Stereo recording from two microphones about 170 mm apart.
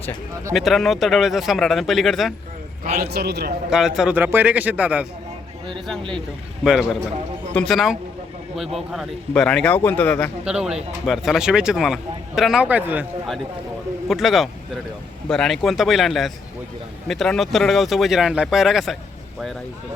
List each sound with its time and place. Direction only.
0.5 s speech: centre (ahead or behind)
3.0 s a man's voice: 70° right (ahead or behind)
3.7 s speech: 5° right (ahead or behind)
6.7 s speech: 5° right (ahead or behind)
10.4 s speech: 5° right (ahead or behind)
14.1 s speech: centre (ahead or behind)